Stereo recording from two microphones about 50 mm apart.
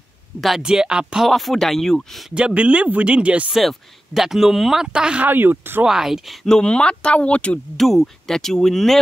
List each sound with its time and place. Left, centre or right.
0.6 s speech: centre
1.3 s speech: centre
2.3 s speech: right
3.6 s speech: centre
5.2 s speech: right
5.9 s speech: centre
6.6 s speech: centre
7.7 s speech: centre